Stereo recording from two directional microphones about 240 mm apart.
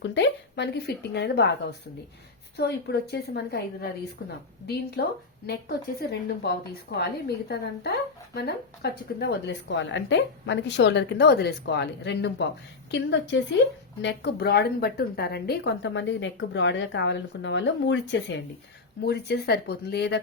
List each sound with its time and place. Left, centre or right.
0.0 s a woman's voice: left
2.6 s a woman's voice: left